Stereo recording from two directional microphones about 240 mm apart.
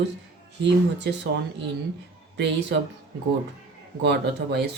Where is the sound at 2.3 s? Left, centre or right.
Right.